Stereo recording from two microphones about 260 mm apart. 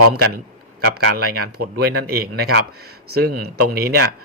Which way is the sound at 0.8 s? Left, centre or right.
Right.